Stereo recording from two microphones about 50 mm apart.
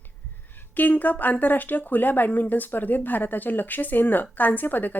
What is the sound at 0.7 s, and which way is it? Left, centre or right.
Speech, left.